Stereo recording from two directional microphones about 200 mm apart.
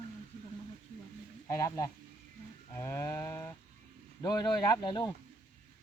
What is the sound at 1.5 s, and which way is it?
Speech, 15° left (ahead or behind).